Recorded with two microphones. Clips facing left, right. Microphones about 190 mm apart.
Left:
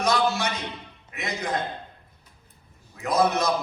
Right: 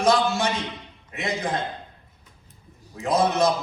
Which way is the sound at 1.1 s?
30° right (ahead or behind).